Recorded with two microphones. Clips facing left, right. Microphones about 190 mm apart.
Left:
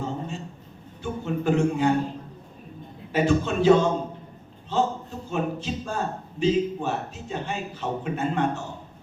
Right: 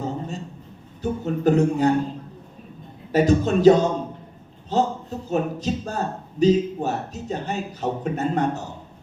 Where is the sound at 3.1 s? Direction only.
40° right (ahead or behind).